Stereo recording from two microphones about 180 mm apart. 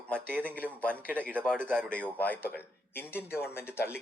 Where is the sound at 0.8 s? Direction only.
10° left (ahead or behind).